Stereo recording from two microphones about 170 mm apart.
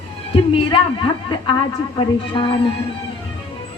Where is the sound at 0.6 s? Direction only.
30° left (ahead or behind).